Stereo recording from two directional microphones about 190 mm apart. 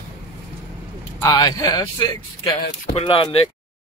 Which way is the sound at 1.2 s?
20° left (ahead or behind).